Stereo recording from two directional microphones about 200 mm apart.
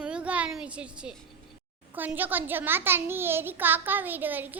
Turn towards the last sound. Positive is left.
turn(degrees=-10)  # may be behind; listen again after turning